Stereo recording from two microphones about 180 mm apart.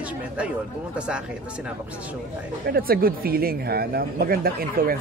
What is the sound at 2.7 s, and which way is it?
Speech, 55° right (ahead or behind).